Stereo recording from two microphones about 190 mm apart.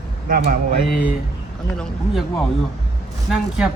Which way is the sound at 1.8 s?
Centre (ahead or behind).